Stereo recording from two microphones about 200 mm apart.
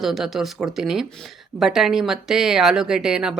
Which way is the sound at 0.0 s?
Centre (ahead or behind).